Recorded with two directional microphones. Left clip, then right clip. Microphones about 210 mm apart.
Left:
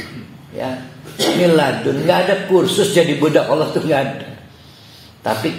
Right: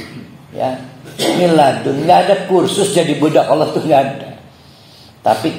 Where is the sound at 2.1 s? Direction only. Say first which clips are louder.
Right 4 dB; 35° left (ahead or behind).